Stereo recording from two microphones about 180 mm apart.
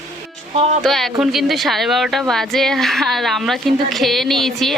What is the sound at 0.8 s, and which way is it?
A woman's voice, centre (ahead or behind).